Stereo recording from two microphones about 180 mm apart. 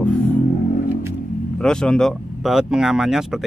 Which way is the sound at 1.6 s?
5° left (ahead or behind).